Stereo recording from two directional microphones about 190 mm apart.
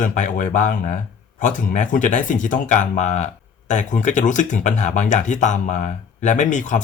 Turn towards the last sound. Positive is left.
turn(degrees=40)  # may be behind; listen again after turning